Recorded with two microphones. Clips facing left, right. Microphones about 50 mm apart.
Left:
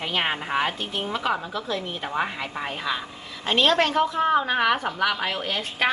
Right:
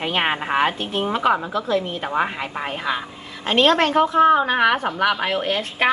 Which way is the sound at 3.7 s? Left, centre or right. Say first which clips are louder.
Right 3 dB; right.